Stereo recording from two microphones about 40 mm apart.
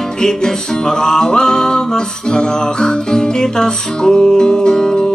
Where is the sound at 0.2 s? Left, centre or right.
Centre.